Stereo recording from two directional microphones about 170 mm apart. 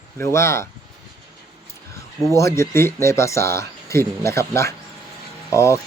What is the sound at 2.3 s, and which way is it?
Speech, 15° left (ahead or behind).